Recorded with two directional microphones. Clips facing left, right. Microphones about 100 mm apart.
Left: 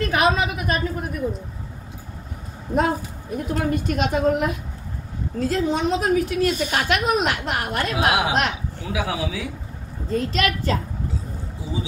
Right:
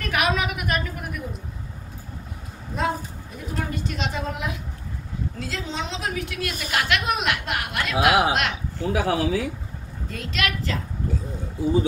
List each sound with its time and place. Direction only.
0.0 s a woman's voice: 30° left (ahead or behind)
2.7 s a woman's voice: 50° left (ahead or behind)
8.7 s speech: 40° right (ahead or behind)
10.0 s a woman's voice: 35° left (ahead or behind)